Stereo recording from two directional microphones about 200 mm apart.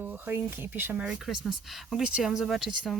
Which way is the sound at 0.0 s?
10° right (ahead or behind).